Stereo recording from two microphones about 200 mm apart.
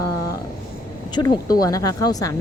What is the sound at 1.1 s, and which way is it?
Speech, 20° left (ahead or behind).